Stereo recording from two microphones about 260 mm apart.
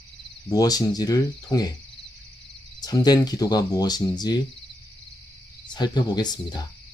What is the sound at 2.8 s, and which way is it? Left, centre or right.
Speech, centre.